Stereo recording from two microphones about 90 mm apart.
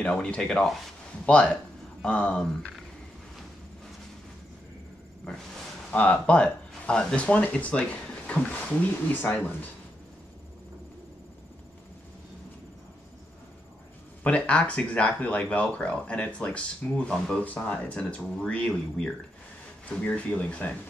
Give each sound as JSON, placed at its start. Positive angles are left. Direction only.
{"t": 0.0, "sound": "speech", "side_deg": 10}
{"t": 5.9, "sound": "speech", "side_deg": 15}
{"t": 14.2, "sound": "speech", "side_deg": 15}